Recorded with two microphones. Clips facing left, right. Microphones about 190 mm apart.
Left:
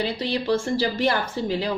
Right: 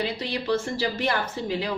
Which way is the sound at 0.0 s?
35° left (ahead or behind).